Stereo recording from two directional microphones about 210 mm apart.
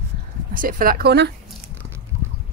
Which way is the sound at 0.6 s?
40° right (ahead or behind).